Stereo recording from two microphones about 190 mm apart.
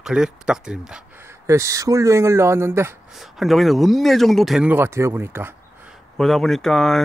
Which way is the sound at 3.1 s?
Centre (ahead or behind).